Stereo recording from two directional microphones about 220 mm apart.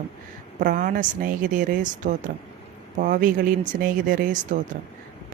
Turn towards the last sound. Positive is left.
turn(degrees=-35)  # may be behind; listen again after turning